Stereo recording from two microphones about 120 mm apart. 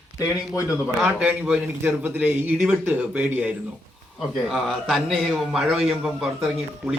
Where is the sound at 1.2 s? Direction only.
10° right (ahead or behind).